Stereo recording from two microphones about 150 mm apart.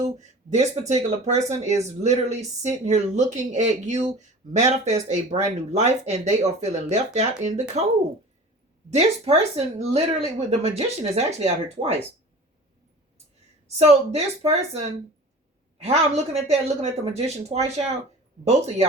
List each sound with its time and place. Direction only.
0.0 s speech: 50° right (ahead or behind)
8.9 s speech: 45° right (ahead or behind)
13.7 s speech: 45° right (ahead or behind)